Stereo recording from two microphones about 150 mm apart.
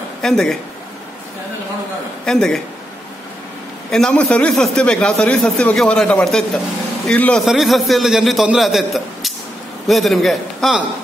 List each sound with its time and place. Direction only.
0.2 s speech: 5° left (ahead or behind)
2.2 s speech: 5° left (ahead or behind)
3.9 s a man's voice: 5° left (ahead or behind)